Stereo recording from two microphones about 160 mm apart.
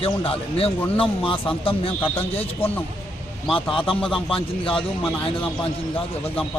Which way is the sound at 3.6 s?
30° left (ahead or behind).